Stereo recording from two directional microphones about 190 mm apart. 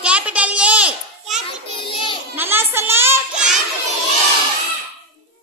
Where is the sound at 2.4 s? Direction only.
10° right (ahead or behind).